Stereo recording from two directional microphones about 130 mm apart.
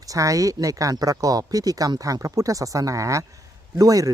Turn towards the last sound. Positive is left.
turn(degrees=-25)  # may be behind; listen again after turning